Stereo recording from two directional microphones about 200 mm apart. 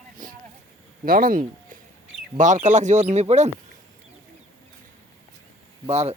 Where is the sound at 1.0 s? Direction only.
45° right (ahead or behind).